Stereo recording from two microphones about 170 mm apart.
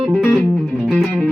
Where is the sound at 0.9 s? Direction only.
Centre (ahead or behind).